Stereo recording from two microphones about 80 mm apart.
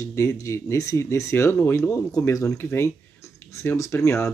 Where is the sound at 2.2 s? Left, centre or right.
Left.